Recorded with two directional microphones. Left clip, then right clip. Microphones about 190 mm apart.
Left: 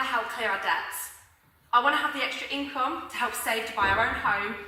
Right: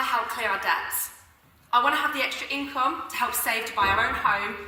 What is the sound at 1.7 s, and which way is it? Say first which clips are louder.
A woman's voice: right 1 dB; 15° right (ahead or behind).